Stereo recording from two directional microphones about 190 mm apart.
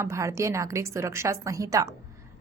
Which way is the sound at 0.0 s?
15° right (ahead or behind).